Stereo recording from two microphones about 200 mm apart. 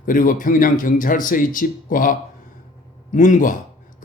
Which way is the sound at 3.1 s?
40° left (ahead or behind).